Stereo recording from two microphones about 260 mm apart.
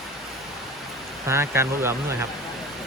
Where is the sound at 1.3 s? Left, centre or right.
Centre.